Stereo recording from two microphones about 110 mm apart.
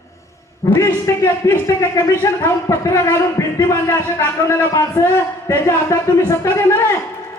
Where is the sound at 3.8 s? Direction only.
15° left (ahead or behind).